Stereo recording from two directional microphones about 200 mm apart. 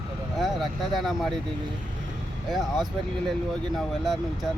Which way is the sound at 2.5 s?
Centre (ahead or behind).